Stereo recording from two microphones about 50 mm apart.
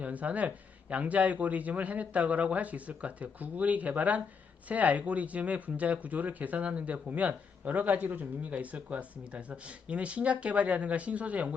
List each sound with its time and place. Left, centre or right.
0.0 s a man's voice: right